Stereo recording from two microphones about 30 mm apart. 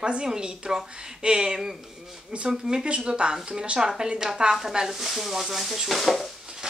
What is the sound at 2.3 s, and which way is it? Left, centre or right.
Speech, right.